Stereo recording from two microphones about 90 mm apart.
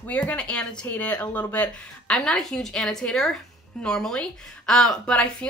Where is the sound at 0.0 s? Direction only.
20° left (ahead or behind).